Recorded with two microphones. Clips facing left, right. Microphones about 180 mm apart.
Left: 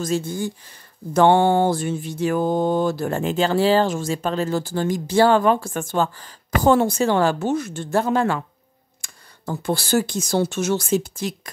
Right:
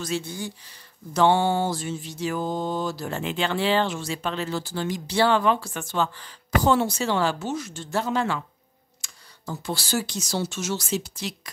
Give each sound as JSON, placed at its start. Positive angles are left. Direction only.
{"t": 0.0, "sound": "speech", "side_deg": 45}